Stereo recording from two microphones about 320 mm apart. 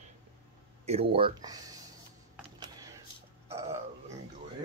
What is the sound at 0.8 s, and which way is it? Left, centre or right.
Speech, centre.